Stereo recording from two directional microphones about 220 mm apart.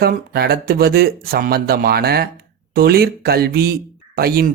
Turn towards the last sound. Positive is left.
turn(degrees=-40)  # may be behind; listen again after turning